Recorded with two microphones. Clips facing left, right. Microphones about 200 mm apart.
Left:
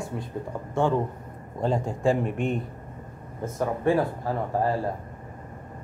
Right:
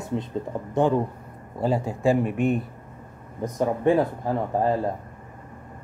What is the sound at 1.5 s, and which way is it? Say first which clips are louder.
Speech: right 2 dB; 5° right (ahead or behind).